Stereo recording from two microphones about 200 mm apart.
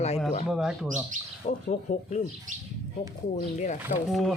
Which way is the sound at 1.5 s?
35° left (ahead or behind).